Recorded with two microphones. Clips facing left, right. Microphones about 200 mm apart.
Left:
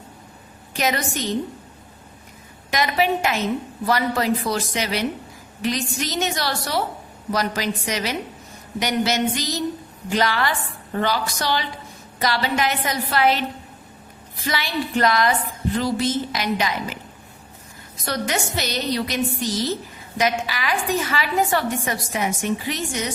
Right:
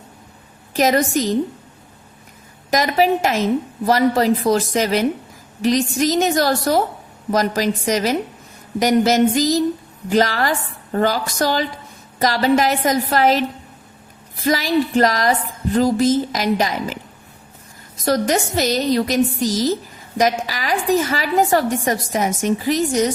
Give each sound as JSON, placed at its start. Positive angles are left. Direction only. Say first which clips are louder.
{"t": 0.8, "sound": "a woman's voice", "louder": "right 7 dB", "side_deg": -40}
{"t": 2.6, "sound": "a woman's voice", "louder": "right 5 dB", "side_deg": -40}
{"t": 14.4, "sound": "a woman's voice", "louder": "right 8 dB", "side_deg": -40}
{"t": 18.0, "sound": "a woman's voice", "louder": "right 7 dB", "side_deg": -40}